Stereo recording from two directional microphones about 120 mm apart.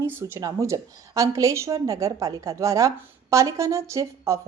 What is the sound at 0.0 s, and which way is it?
A woman's voice, 20° right (ahead or behind).